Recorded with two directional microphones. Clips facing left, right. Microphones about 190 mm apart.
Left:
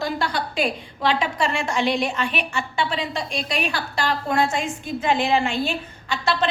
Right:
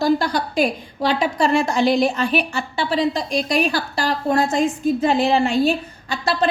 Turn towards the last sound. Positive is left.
turn(degrees=-40)  # may be behind; listen again after turning